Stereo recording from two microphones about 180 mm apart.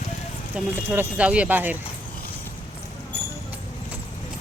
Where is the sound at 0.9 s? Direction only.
10° right (ahead or behind).